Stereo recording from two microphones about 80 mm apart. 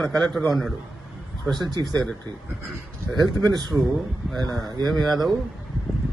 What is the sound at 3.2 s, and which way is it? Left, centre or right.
Speech, right.